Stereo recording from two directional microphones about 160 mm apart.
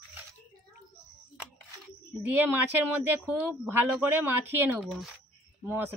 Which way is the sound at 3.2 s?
10° right (ahead or behind).